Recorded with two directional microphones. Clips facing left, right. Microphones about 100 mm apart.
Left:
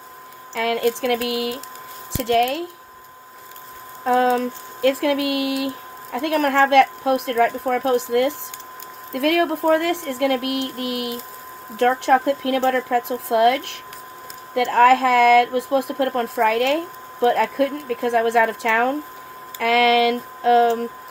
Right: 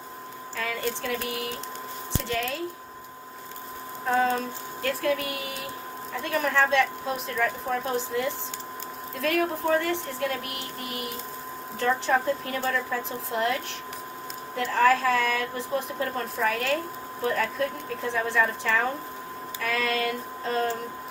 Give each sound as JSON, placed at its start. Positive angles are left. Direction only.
{"t": 0.5, "sound": "speech", "side_deg": 85}
{"t": 2.2, "sound": "speech", "side_deg": 75}
{"t": 4.0, "sound": "speech", "side_deg": 80}
{"t": 11.8, "sound": "speech", "side_deg": 70}